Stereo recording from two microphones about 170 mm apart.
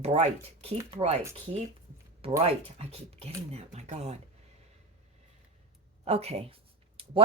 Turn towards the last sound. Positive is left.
turn(degrees=-35)  # may be behind; listen again after turning